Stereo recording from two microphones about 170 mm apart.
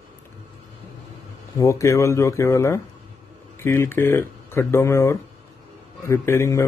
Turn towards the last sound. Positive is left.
turn(degrees=15)  # may be behind; listen again after turning